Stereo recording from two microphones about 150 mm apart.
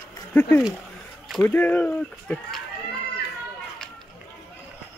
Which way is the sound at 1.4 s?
15° left (ahead or behind).